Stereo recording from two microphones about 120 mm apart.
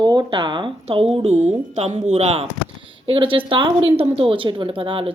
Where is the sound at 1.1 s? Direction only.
65° right (ahead or behind); by 5.1 s 50° right (ahead or behind).